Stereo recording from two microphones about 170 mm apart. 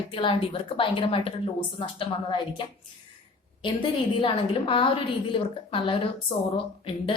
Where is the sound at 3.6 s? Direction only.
30° left (ahead or behind).